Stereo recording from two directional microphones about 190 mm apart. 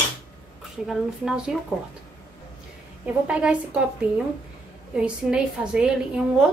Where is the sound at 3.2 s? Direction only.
5° right (ahead or behind).